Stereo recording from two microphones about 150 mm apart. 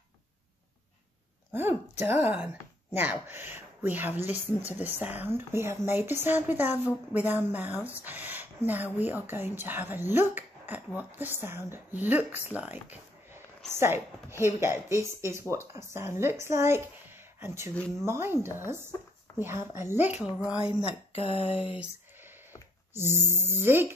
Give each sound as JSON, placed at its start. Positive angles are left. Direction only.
{"t": 1.5, "sound": "speech", "side_deg": -15}
{"t": 19.3, "sound": "speech", "side_deg": -15}
{"t": 21.1, "sound": "speech", "side_deg": 40}
{"t": 22.9, "sound": "speech", "side_deg": -15}